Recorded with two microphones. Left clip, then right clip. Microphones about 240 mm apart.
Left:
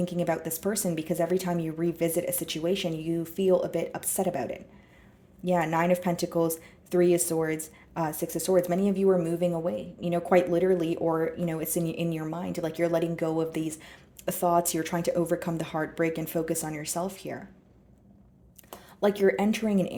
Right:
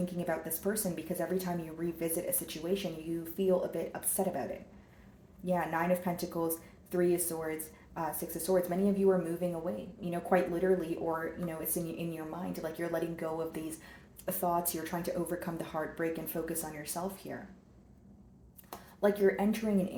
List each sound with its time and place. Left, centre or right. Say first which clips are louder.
0.0 s speech: left 7 dB; left
5.5 s speech: left 6 dB; left
18.9 s speech: left 4 dB; left